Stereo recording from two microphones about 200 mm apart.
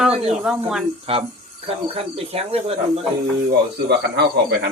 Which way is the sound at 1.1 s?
30° right (ahead or behind).